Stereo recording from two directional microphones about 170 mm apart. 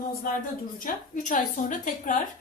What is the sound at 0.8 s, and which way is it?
Speech, 50° left (ahead or behind).